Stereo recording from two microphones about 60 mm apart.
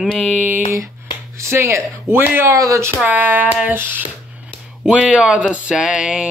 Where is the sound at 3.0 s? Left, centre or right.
Right.